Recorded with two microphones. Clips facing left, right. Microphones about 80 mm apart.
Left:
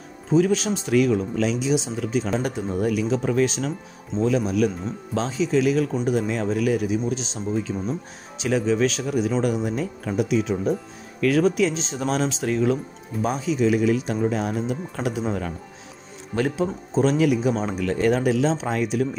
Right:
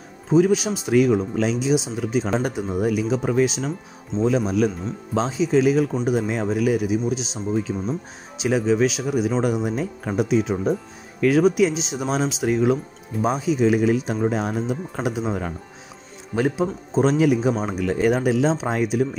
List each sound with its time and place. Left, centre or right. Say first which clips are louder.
0.3 s speech: right 2 dB; centre
5.1 s speech: right 2 dB; right
13.1 s speech: right 3 dB; centre
13.6 s speech: even; right
17.6 s speech: right 1 dB; centre